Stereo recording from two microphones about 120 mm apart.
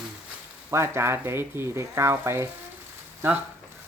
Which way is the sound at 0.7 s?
20° right (ahead or behind).